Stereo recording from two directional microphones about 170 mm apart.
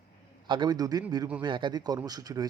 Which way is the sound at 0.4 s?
25° right (ahead or behind).